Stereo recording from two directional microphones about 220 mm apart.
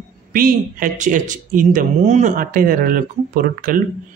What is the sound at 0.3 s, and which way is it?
Speech, 40° right (ahead or behind).